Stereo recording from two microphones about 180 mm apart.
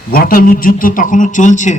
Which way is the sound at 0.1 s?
55° left (ahead or behind).